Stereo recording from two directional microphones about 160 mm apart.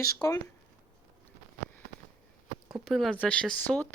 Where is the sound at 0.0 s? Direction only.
20° left (ahead or behind).